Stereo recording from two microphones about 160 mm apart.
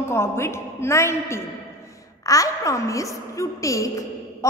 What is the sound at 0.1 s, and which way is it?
A woman's voice, 15° left (ahead or behind).